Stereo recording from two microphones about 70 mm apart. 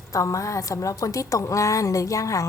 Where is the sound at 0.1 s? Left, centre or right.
Left.